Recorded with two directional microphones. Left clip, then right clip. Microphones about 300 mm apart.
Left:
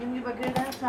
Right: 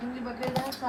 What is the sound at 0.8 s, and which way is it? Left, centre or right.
Speech, right.